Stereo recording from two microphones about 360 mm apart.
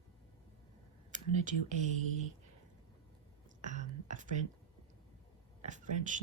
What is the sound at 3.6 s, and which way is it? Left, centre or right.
Whispering, centre.